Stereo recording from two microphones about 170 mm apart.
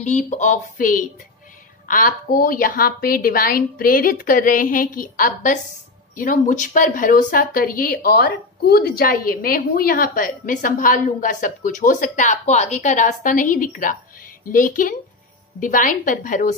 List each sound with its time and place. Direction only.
0.0 s a woman's voice: 45° left (ahead or behind)